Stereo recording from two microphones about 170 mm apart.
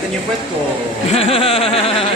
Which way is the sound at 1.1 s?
35° left (ahead or behind).